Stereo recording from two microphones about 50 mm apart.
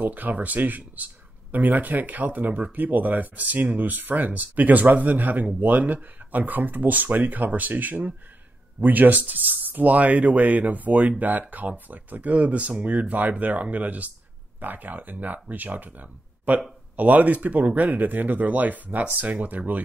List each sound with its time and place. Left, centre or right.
0.0 s speech: right